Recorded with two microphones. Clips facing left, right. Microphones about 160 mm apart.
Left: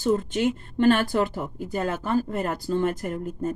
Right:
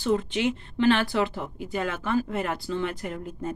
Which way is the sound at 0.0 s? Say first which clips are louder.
Left 2 dB; 45° left (ahead or behind).